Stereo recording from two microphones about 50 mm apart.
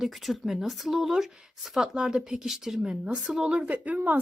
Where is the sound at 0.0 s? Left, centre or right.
Centre.